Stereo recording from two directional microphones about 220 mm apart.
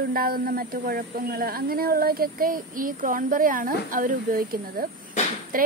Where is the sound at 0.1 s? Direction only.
40° right (ahead or behind).